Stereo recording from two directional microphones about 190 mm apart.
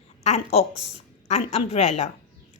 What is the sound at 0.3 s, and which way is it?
A woman's voice, 35° left (ahead or behind).